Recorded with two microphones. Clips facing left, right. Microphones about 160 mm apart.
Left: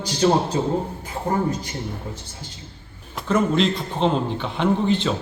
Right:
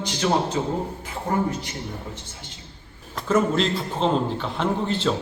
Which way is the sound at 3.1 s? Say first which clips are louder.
Left 1 dB; centre (ahead or behind).